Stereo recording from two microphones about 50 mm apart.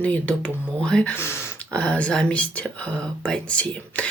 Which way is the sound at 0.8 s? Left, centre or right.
Centre.